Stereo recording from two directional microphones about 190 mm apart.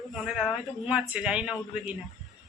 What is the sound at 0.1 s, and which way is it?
A man's voice, centre (ahead or behind).